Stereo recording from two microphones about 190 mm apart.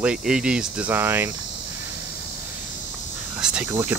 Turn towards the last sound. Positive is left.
turn(degrees=-15)  # may be behind; listen again after turning